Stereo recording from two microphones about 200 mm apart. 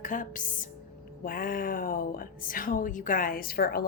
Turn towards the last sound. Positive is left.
turn(degrees=50)  # may be behind; listen again after turning